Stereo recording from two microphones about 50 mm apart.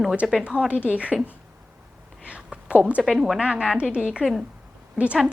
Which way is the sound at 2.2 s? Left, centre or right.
Right.